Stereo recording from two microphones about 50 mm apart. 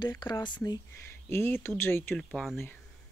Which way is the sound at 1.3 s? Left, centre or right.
Left.